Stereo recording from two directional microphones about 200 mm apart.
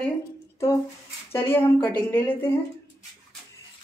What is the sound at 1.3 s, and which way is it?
A woman's voice, 10° left (ahead or behind).